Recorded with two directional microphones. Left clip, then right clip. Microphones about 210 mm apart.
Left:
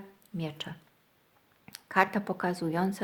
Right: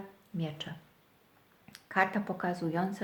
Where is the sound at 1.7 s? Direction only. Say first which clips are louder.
Left 3 dB; 40° left (ahead or behind).